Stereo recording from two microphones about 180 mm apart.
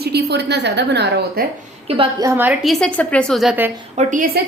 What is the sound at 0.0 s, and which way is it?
A woman's voice, 65° right (ahead or behind).